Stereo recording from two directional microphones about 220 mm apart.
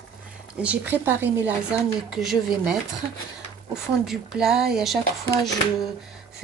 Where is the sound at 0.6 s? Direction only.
5° right (ahead or behind).